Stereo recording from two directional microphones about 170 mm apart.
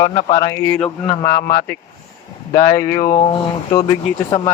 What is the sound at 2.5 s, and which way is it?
Speech, 20° left (ahead or behind).